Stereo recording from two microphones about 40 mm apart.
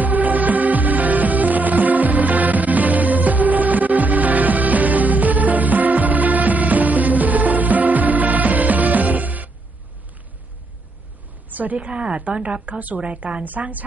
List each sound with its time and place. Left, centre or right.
0.0 s music: right
11.5 s a woman's voice: right
11.9 s a woman's voice: right
12.6 s a woman's voice: right